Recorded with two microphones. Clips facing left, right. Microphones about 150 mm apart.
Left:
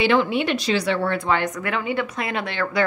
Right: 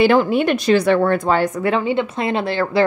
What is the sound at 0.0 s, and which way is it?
A woman's voice, 45° right (ahead or behind).